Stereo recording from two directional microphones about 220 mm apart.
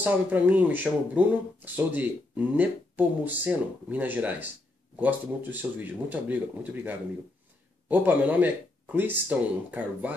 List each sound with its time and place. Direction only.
0.0 s speech: 10° right (ahead or behind)